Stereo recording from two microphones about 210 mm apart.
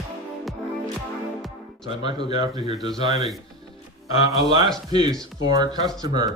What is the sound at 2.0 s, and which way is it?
Speech, 20° right (ahead or behind).